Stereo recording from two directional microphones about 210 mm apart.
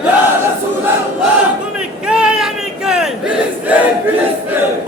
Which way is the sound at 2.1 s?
5° right (ahead or behind).